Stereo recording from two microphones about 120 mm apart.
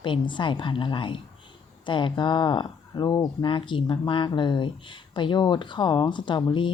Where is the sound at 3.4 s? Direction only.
45° left (ahead or behind).